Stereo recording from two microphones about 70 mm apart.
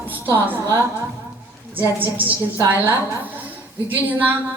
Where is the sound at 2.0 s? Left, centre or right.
Right.